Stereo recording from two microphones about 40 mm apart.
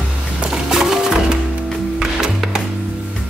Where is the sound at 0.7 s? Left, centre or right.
Centre.